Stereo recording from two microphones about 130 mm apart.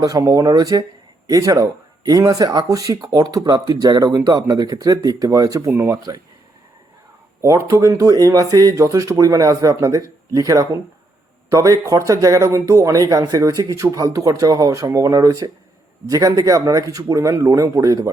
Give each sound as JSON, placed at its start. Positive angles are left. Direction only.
{"t": 0.0, "sound": "speech", "side_deg": -30}
{"t": 7.4, "sound": "speech", "side_deg": -20}